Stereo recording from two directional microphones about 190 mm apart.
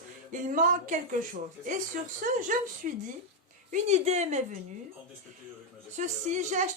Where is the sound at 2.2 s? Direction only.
45° right (ahead or behind).